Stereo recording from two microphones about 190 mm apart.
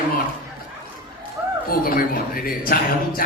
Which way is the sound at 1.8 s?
50° left (ahead or behind).